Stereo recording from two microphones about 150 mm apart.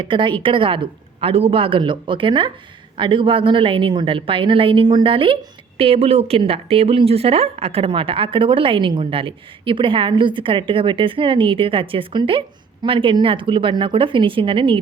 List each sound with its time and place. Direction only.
0.0 s a woman's voice: 35° right (ahead or behind)